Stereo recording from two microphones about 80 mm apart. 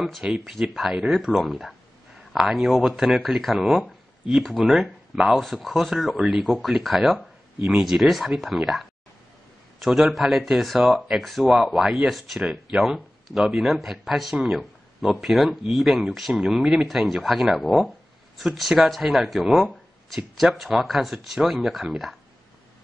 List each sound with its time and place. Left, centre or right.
0.0 s speech: centre